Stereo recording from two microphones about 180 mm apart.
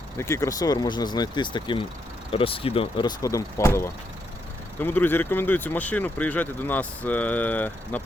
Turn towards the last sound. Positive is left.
turn(degrees=10)  # may be behind; listen again after turning